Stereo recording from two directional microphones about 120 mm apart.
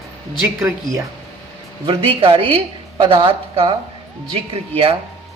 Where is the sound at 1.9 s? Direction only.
50° right (ahead or behind).